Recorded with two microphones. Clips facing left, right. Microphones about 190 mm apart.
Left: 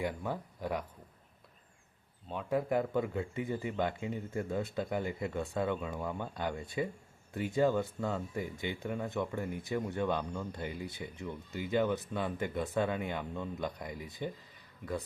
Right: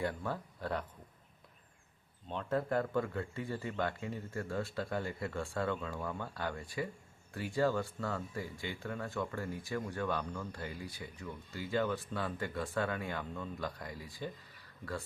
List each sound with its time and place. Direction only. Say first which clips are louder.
0.0 s speech: left 1 dB; 15° left (ahead or behind)
2.3 s speech: left 2 dB; 10° left (ahead or behind)